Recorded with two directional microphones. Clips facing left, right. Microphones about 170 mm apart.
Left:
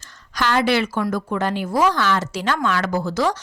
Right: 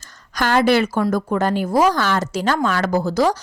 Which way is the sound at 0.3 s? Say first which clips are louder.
Right 3 dB; 45° right (ahead or behind).